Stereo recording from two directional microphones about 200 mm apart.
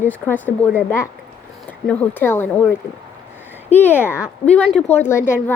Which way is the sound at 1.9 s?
10° left (ahead or behind).